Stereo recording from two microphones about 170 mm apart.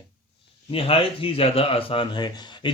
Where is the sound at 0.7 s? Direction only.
30° left (ahead or behind).